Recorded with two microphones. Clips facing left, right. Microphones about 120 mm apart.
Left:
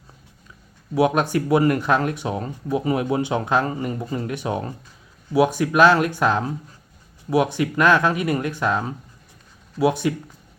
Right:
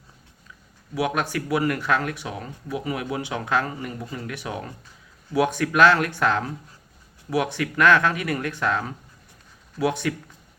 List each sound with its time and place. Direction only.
0.9 s speech: 25° left (ahead or behind)
5.3 s speech: 15° left (ahead or behind)